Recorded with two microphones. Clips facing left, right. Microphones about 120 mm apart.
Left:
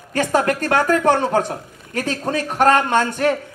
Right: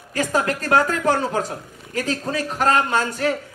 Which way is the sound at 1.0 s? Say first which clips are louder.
Left 4 dB; 65° left (ahead or behind).